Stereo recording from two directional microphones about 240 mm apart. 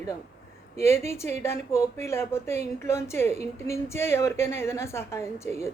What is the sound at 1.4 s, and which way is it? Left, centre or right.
Speech, centre.